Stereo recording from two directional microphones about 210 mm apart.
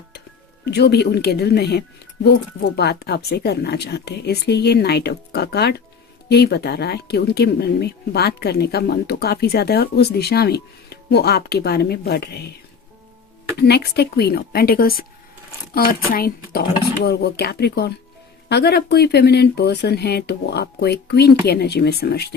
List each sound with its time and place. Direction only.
0.6 s speech: 50° left (ahead or behind)
13.6 s speech: 50° left (ahead or behind)